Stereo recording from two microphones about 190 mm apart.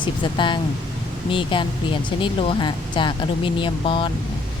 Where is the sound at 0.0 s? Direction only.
25° left (ahead or behind).